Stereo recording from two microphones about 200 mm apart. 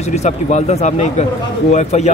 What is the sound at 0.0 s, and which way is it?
Speech, 35° left (ahead or behind).